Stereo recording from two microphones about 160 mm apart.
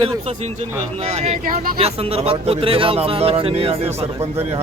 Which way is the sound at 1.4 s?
60° right (ahead or behind).